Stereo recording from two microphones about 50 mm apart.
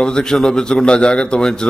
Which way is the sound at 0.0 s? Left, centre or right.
Centre.